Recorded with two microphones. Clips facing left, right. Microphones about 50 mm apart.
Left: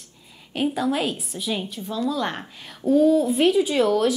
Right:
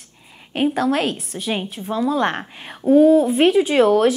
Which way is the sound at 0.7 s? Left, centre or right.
Right.